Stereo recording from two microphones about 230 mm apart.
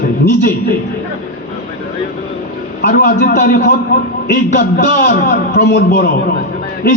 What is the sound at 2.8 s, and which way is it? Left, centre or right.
A man's voice, left.